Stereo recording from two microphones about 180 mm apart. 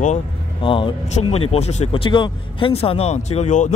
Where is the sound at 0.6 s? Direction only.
30° left (ahead or behind).